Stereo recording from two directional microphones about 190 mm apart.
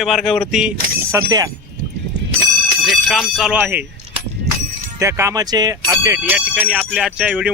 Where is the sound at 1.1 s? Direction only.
20° right (ahead or behind).